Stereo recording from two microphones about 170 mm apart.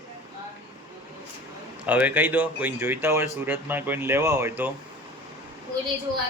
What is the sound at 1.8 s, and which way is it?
Speech, 10° right (ahead or behind).